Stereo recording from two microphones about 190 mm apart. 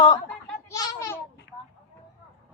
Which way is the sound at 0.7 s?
20° left (ahead or behind).